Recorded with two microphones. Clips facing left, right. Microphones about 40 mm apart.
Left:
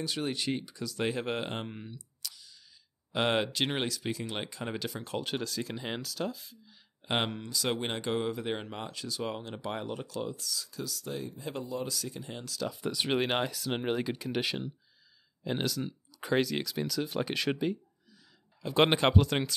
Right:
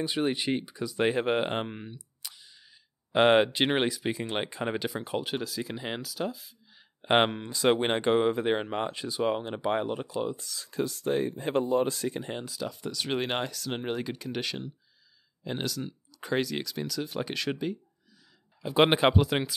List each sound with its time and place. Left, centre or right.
0.0 s speech: right
2.2 s a sound: right
3.1 s speech: right
4.6 s speech: centre
7.0 s speech: right
12.8 s speech: centre
13.1 s speech: centre
18.6 s speech: centre